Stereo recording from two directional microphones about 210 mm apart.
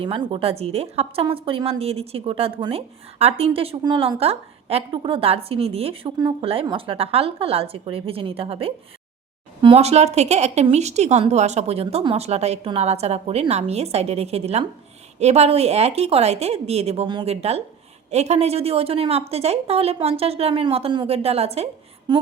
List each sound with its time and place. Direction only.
0.0 s a woman's voice: 25° right (ahead or behind)